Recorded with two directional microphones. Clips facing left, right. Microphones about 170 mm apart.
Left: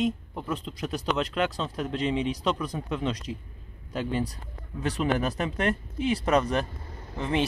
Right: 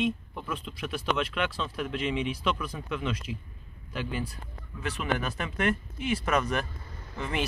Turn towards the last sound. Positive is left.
turn(degrees=30)  # may be behind; listen again after turning